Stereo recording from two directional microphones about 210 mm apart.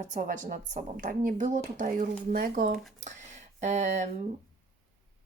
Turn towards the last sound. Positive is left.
turn(degrees=-35)  # may be behind; listen again after turning